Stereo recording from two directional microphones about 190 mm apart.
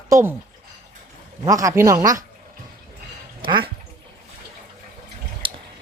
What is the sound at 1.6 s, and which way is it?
Speech, 15° right (ahead or behind).